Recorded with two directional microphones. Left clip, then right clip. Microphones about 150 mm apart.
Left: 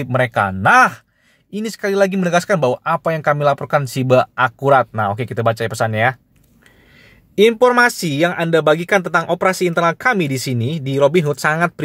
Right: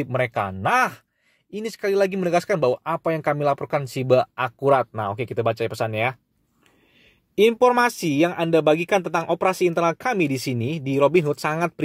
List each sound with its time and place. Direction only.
0.1 s speech: 10° right (ahead or behind)
7.3 s speech: 15° right (ahead or behind)